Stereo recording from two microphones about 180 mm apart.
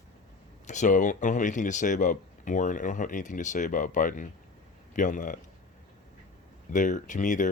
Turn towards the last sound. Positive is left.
turn(degrees=45)  # may be behind; listen again after turning